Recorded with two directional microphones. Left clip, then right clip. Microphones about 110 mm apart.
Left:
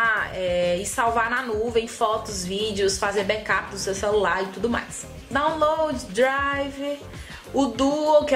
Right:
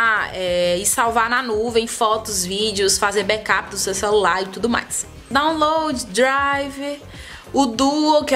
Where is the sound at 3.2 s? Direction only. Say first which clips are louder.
Right 4 dB; 40° right (ahead or behind).